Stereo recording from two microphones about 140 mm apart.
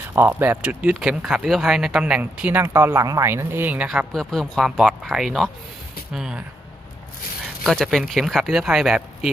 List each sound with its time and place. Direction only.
0.2 s speech: 15° right (ahead or behind)
7.6 s speech: centre (ahead or behind)